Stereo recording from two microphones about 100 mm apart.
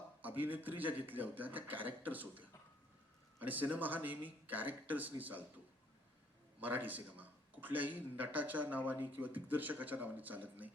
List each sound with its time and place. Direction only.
0.2 s a man's voice: 15° right (ahead or behind)
6.6 s a man's voice: 15° right (ahead or behind)